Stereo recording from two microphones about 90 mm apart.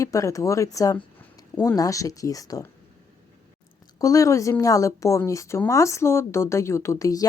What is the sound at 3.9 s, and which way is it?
Speech, 40° left (ahead or behind).